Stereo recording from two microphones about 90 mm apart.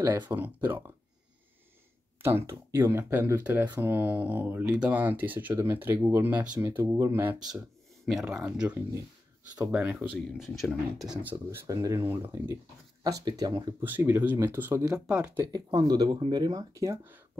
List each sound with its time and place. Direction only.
0.3 s speech: 25° right (ahead or behind)
2.2 s speech: 30° right (ahead or behind)
3.4 s speech: 20° right (ahead or behind)
8.0 s speech: centre (ahead or behind)
8.3 s speech: 10° right (ahead or behind)
9.9 s speech: 5° right (ahead or behind)
11.6 s speech: 35° right (ahead or behind)
13.0 s speech: 50° right (ahead or behind)
13.7 s speech: 25° right (ahead or behind)
15.0 s speech: 15° right (ahead or behind)
15.4 s speech: 50° right (ahead or behind)